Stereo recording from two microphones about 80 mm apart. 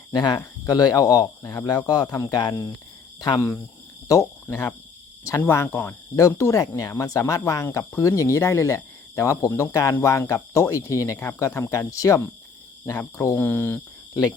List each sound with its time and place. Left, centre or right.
0.1 s speech: left
2.1 s speech: left
4.4 s speech: left
6.7 s speech: left
11.2 s speech: left